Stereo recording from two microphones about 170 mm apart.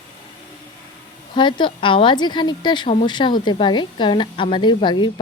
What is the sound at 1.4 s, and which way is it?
A woman's voice, 25° left (ahead or behind).